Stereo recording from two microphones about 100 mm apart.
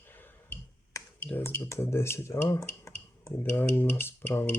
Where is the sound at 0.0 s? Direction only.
20° left (ahead or behind).